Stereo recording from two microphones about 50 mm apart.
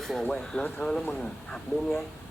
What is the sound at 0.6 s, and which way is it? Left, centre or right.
Speech, left.